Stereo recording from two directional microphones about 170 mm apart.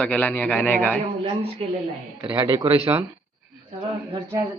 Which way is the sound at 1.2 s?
35° right (ahead or behind).